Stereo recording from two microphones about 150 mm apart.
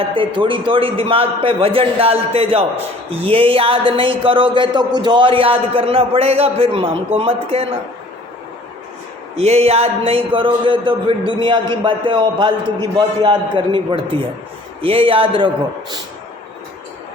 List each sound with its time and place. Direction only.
0.0 s speech: 35° right (ahead or behind)
9.4 s speech: 45° right (ahead or behind)